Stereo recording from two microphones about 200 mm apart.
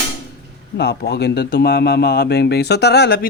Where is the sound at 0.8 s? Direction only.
55° left (ahead or behind).